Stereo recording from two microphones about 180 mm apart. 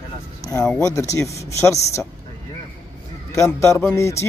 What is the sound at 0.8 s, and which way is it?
Speech, 15° left (ahead or behind).